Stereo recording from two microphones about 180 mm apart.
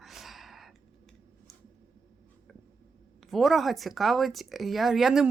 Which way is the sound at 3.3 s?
Centre (ahead or behind).